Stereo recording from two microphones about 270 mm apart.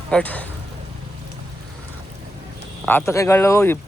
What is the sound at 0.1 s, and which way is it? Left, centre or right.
Speech, centre.